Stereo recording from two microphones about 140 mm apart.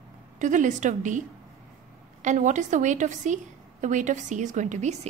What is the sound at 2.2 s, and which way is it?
A woman's voice, 60° right (ahead or behind).